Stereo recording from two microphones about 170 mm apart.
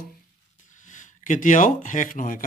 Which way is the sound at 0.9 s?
50° left (ahead or behind).